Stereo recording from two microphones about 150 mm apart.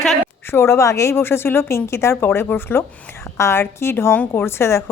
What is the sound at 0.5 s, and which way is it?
A woman's voice, 15° left (ahead or behind).